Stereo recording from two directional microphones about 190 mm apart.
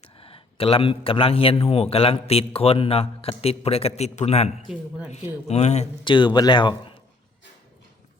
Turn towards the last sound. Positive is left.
turn(degrees=70)  # may be behind; listen again after turning